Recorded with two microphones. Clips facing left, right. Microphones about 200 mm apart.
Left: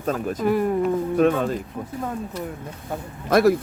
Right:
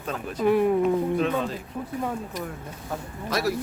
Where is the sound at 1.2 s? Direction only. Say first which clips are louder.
Left 6 dB; 50° left (ahead or behind).